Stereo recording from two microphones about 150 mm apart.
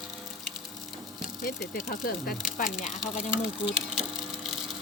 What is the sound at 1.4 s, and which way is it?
Speech, 85° left.